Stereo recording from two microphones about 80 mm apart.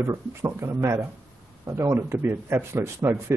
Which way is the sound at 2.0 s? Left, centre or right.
Right.